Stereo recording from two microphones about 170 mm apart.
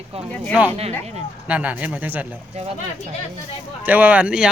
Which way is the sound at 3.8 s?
10° right (ahead or behind).